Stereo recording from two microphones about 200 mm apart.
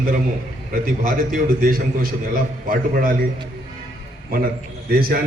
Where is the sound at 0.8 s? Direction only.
45° right (ahead or behind).